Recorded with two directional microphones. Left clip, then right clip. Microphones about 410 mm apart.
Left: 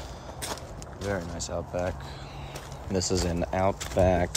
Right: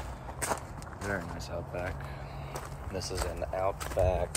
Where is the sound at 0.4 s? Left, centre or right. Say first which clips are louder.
Right 3 dB; centre.